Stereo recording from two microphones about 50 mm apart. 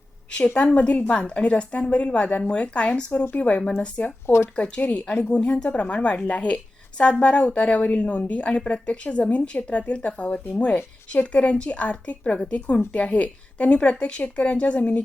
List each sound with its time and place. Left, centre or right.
0.3 s speech: left
3.6 s speech: centre
4.5 s speech: left